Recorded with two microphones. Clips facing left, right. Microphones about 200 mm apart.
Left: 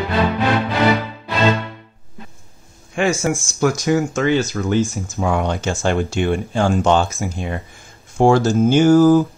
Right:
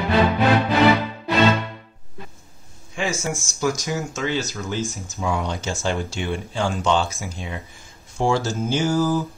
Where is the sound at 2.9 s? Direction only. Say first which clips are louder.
Left 7 dB; 60° left (ahead or behind).